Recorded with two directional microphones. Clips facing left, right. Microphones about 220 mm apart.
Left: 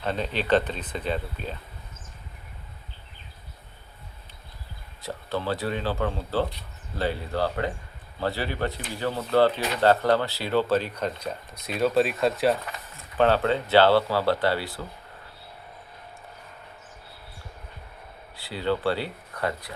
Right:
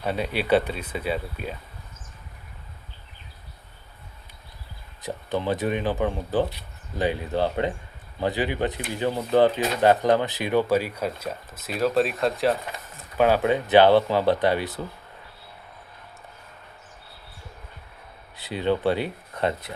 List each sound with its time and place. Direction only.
0.0 s speech: 10° right (ahead or behind)
5.0 s speech: 15° right (ahead or behind); by 12.5 s centre (ahead or behind)
13.1 s speech: 10° right (ahead or behind)
18.3 s speech: 20° right (ahead or behind)